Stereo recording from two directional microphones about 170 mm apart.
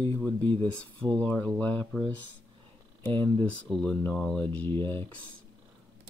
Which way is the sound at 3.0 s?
10° left (ahead or behind).